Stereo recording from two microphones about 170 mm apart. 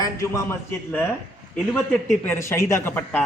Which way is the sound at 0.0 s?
20° left (ahead or behind).